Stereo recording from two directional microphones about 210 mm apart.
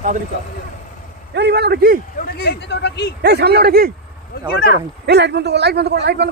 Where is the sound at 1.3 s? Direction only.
50° right (ahead or behind).